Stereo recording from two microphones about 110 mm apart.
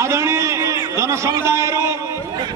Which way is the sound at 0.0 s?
25° right (ahead or behind).